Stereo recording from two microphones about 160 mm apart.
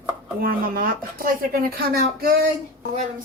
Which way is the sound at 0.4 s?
65° right (ahead or behind).